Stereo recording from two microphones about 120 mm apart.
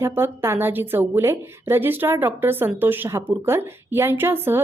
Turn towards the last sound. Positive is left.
turn(degrees=-20)  # may be behind; listen again after turning